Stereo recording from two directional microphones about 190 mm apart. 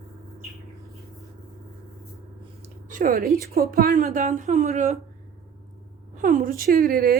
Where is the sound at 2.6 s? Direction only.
40° right (ahead or behind).